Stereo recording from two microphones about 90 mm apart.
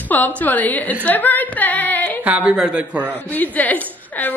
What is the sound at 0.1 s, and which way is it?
A woman's voice, 20° left (ahead or behind).